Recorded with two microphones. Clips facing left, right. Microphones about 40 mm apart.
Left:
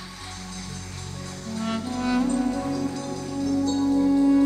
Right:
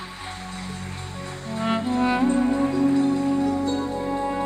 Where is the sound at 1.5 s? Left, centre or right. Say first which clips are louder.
Right 5 dB; right.